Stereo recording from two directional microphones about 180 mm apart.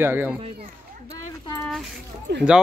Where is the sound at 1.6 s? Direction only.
Centre (ahead or behind).